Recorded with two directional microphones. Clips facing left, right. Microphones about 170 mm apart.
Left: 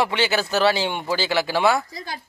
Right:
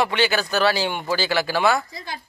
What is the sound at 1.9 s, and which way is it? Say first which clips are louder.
Speech: left 1 dB; 40° left (ahead or behind).